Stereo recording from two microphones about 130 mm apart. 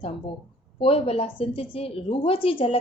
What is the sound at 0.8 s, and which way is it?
A woman's voice, 50° left (ahead or behind).